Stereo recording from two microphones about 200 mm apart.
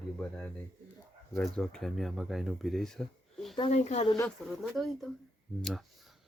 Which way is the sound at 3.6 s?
35° left (ahead or behind).